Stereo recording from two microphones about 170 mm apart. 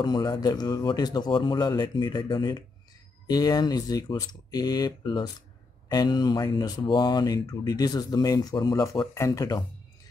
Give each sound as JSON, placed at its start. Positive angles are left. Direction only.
{"t": 0.0, "sound": "speech", "side_deg": 25}